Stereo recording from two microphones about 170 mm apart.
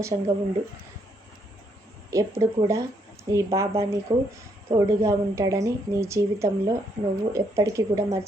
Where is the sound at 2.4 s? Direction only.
20° right (ahead or behind).